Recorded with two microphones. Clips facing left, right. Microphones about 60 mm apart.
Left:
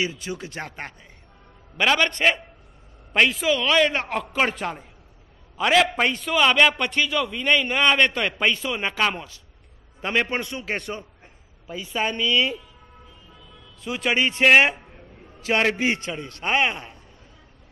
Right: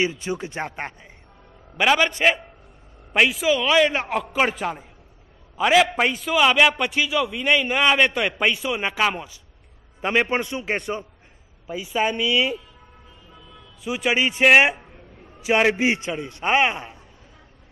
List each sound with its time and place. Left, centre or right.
0.0 s a man's voice: right
1.8 s a man's voice: centre
11.6 s a man's voice: centre
13.8 s a man's voice: centre